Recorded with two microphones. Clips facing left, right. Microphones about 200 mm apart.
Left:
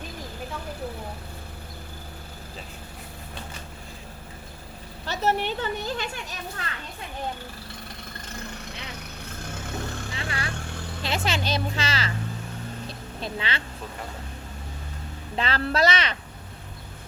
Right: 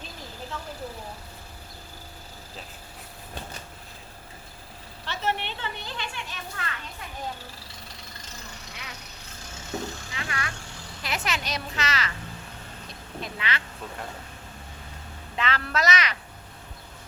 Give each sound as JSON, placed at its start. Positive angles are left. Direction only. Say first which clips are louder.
{"t": 5.0, "sound": "speech", "louder": "left 5 dB", "side_deg": 40}
{"t": 9.4, "sound": "vehicle", "louder": "even", "side_deg": 55}
{"t": 10.2, "sound": "vehicle", "louder": "even", "side_deg": 30}
{"t": 11.0, "sound": "speech", "louder": "left 4 dB", "side_deg": 30}
{"t": 13.2, "sound": "speech", "louder": "left 2 dB", "side_deg": 30}
{"t": 15.4, "sound": "speech", "louder": "left 4 dB", "side_deg": 30}